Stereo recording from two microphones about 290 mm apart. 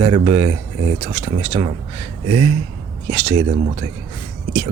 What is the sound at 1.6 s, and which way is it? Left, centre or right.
Speech, centre.